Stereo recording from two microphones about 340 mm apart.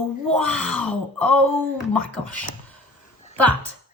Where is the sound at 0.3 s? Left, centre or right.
Centre.